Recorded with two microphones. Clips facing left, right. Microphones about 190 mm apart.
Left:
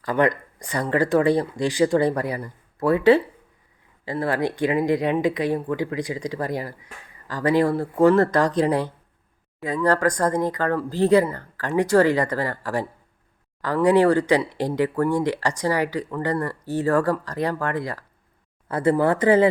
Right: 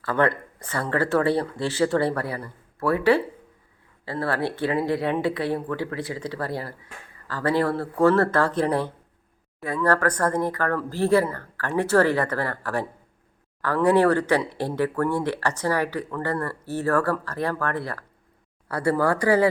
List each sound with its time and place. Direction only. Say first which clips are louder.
0.0 s speech: left 2 dB; 15° left (ahead or behind)